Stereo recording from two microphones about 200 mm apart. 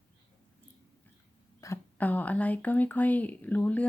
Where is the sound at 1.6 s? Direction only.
10° left (ahead or behind).